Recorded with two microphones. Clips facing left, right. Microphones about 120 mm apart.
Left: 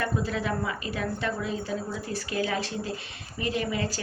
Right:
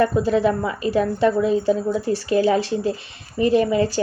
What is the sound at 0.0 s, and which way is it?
A woman's voice, 30° right (ahead or behind).